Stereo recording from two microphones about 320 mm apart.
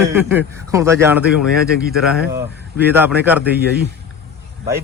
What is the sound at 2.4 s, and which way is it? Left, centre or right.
Speech, right.